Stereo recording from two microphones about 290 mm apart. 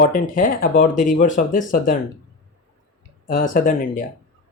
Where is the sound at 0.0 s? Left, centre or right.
Left.